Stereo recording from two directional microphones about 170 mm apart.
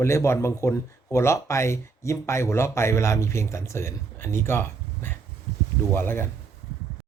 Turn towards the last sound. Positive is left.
turn(degrees=15)  # may be behind; listen again after turning